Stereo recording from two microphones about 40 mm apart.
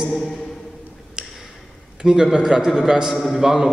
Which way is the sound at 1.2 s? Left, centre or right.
Centre.